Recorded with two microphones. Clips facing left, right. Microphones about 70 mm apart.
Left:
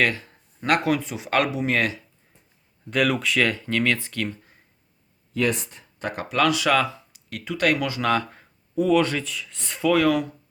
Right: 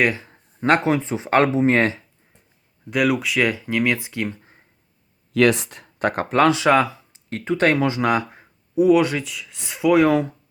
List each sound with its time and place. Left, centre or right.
0.0 s speech: right
2.9 s speech: centre; by 4.6 s right
5.3 s speech: right; by 9.9 s centre
9.9 s speech: right